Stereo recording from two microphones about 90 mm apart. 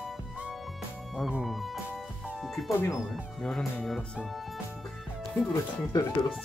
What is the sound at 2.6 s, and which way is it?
Speech, 35° left (ahead or behind).